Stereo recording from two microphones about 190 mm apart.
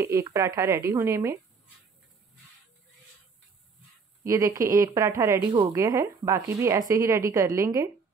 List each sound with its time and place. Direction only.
0.0 s speech: 15° right (ahead or behind)
4.2 s speech: 15° right (ahead or behind)